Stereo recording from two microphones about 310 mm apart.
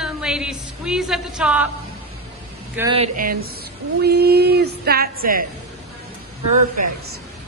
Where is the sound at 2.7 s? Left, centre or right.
Centre.